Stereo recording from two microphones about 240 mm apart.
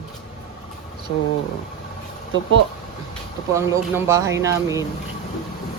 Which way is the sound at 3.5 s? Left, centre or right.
Centre.